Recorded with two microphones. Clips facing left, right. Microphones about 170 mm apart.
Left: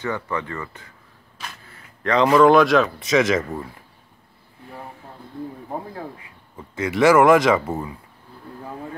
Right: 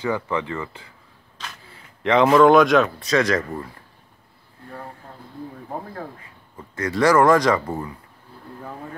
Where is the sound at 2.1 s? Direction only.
Centre (ahead or behind).